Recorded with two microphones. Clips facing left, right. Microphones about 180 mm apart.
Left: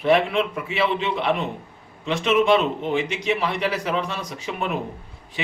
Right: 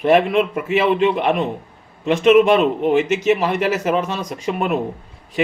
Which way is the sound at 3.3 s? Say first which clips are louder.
Right 6 dB; 45° right (ahead or behind).